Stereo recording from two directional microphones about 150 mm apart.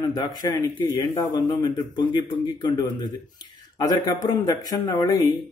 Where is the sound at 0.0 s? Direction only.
25° left (ahead or behind).